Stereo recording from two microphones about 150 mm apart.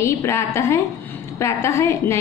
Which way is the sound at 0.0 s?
20° left (ahead or behind).